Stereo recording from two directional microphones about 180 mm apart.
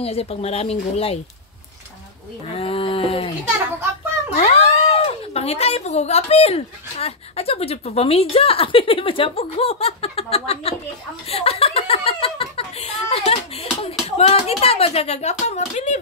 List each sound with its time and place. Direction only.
0.0 s speech: 35° left (ahead or behind)
2.5 s speech: 30° left (ahead or behind)
4.4 s speech: 35° left (ahead or behind)